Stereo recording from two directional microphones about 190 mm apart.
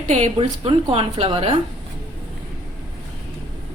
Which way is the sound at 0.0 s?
40° right (ahead or behind).